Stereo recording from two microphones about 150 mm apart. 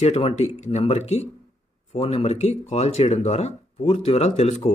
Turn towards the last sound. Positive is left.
turn(degrees=45)  # may be behind; listen again after turning